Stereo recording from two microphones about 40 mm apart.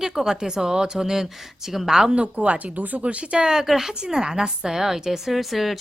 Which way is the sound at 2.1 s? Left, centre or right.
Right.